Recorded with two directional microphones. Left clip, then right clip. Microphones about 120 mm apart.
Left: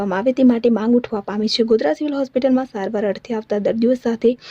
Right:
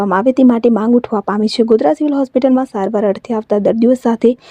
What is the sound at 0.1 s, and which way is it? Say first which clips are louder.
Speech: right 4 dB; 55° right (ahead or behind).